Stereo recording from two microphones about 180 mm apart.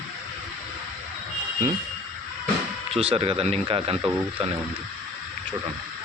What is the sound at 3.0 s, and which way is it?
Speech, 30° right (ahead or behind).